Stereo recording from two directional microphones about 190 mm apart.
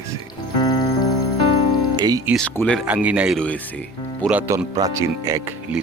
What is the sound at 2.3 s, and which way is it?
Speech, 10° left (ahead or behind).